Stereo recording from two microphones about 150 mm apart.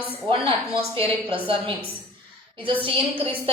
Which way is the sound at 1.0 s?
35° right (ahead or behind).